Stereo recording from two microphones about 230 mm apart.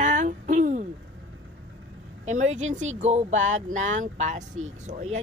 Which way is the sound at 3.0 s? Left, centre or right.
Right.